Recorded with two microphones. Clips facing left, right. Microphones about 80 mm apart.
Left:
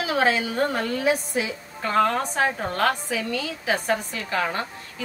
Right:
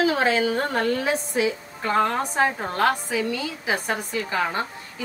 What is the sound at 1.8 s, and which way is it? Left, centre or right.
A woman's voice, centre.